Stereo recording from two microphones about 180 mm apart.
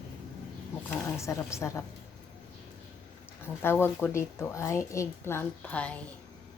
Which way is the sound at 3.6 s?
10° left (ahead or behind).